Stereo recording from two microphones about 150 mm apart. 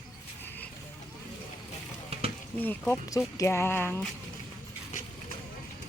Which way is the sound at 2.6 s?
10° left (ahead or behind).